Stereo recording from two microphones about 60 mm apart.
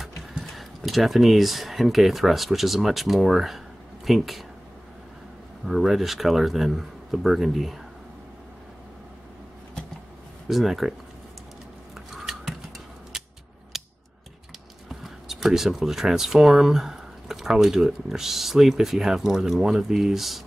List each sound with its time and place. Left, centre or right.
0.5 s speech: centre
5.7 s speech: centre
10.5 s speech: centre
11.9 s scissors: centre
13.7 s mechanisms: centre
14.9 s speech: centre